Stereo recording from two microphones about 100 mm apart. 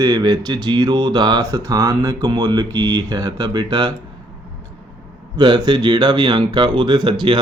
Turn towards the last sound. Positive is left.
turn(degrees=-50)  # may be behind; listen again after turning